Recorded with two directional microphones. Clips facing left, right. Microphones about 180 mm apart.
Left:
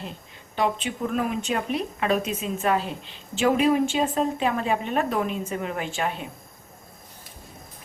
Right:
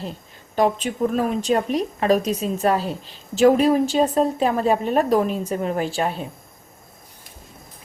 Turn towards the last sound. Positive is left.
turn(degrees=-35)  # may be behind; listen again after turning